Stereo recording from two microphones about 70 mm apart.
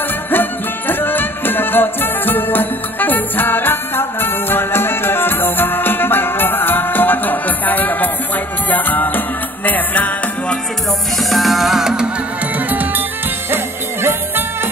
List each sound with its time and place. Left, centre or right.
0.3 s music: left
11.2 s music: centre
12.5 s music: right